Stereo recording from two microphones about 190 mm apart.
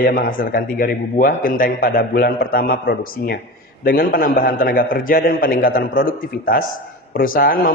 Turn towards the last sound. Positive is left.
turn(degrees=50)  # may be behind; listen again after turning